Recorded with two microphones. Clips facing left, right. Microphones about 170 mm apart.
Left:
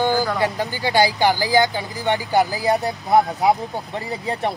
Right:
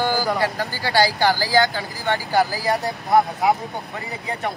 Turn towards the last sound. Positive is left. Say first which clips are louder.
# left 3 dB
turn(degrees=30)  # may be behind; listen again after turning